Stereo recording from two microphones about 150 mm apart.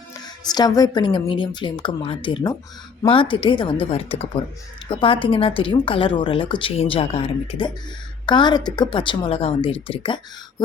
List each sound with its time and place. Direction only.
0.1 s speech: 25° left (ahead or behind)